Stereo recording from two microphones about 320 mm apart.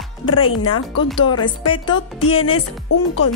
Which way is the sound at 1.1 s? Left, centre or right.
Centre.